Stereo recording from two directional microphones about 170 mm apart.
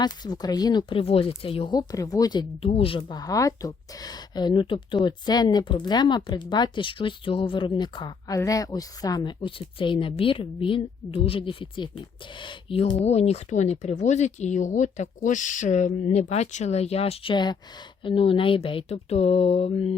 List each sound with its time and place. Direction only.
0.0 s speech: 25° left (ahead or behind)
2.6 s speech: 35° left (ahead or behind)